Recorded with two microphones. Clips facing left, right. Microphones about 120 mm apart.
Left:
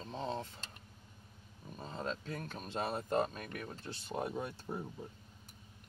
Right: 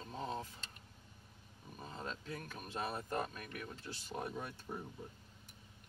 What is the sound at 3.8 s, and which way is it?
Speech, 40° left (ahead or behind).